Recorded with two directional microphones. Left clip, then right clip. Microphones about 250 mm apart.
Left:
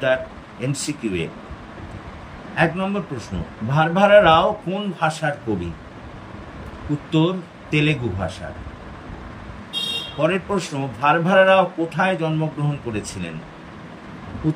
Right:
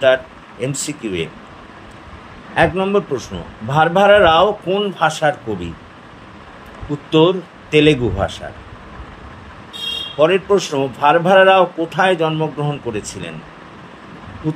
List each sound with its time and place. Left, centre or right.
0.0 s a man's voice: centre
2.5 s a man's voice: centre
7.1 s a man's voice: centre
10.2 s a man's voice: centre